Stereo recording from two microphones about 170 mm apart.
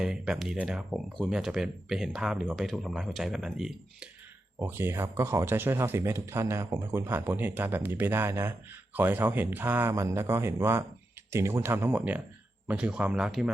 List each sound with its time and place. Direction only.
0.0 s speech: 5° right (ahead or behind)
4.6 s speech: 15° right (ahead or behind)